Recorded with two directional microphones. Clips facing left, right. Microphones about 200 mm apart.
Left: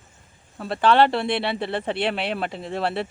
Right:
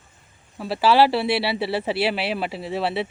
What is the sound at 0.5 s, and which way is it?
Speech, 5° right (ahead or behind).